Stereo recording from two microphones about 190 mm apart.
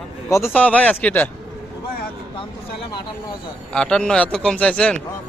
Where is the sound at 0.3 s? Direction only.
15° left (ahead or behind).